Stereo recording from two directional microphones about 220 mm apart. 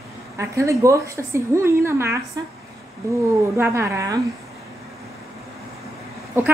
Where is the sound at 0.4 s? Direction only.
15° right (ahead or behind).